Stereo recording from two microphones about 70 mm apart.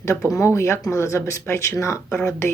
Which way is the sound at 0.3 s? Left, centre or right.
Left.